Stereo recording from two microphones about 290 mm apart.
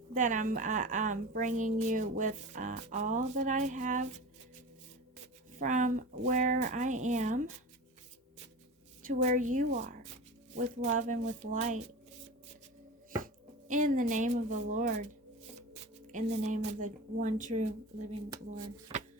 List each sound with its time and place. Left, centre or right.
0.1 s a woman's voice: right
5.5 s a woman's voice: right
9.0 s a woman's voice: right
13.7 s a woman's voice: right
16.1 s a woman's voice: right